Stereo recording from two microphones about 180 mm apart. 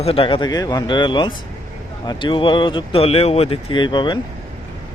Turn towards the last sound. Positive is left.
turn(degrees=25)  # may be behind; listen again after turning